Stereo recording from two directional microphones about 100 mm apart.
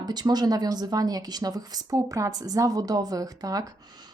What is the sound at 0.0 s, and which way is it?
Speech, 45° right (ahead or behind).